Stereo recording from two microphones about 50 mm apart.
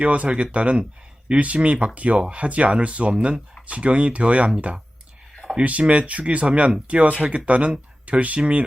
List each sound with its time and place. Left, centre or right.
0.0 s speech: right
5.4 s a sound: centre
5.8 s speech: right